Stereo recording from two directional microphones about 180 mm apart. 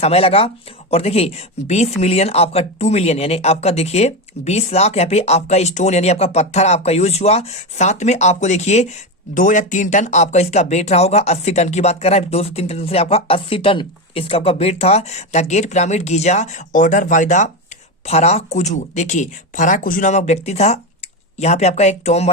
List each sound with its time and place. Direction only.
0.0 s speech: 35° left (ahead or behind)